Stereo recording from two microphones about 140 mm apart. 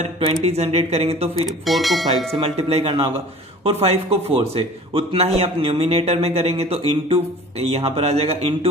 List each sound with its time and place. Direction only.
0.0 s speech: 50° right (ahead or behind)
1.7 s speech: centre (ahead or behind)
2.3 s speech: 45° right (ahead or behind)